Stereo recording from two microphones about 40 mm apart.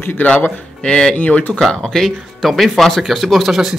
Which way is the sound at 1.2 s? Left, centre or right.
Left.